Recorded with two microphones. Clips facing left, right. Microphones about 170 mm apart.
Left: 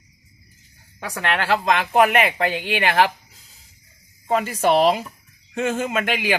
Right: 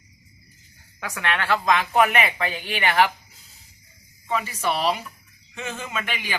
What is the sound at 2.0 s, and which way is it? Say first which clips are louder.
Speech: left 7 dB; 40° left (ahead or behind).